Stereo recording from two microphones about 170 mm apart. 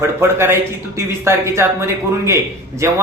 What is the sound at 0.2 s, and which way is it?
Speech, 15° right (ahead or behind).